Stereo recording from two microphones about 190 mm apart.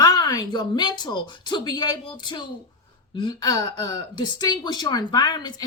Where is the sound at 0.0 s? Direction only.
20° left (ahead or behind).